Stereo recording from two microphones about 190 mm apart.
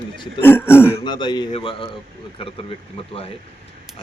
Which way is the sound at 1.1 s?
25° left (ahead or behind).